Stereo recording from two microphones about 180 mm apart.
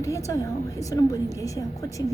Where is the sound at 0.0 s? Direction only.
15° left (ahead or behind).